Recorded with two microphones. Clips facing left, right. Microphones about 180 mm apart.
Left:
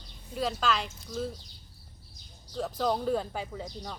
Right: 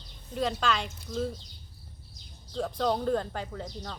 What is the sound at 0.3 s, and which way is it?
A woman's voice, centre (ahead or behind).